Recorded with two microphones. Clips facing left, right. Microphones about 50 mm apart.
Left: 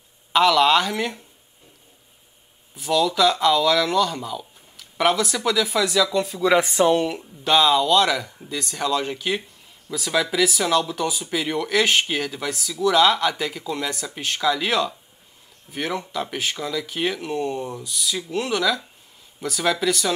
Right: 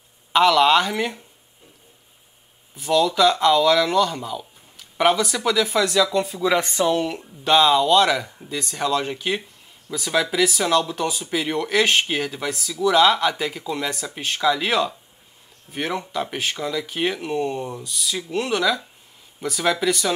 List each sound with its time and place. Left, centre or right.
0.3 s speech: centre
2.8 s speech: centre
6.5 s speech: centre